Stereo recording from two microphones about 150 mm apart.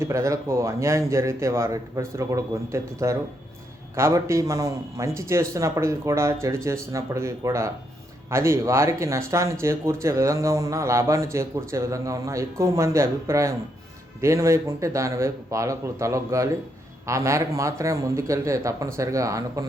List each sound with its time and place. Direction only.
0.0 s speech: 20° right (ahead or behind)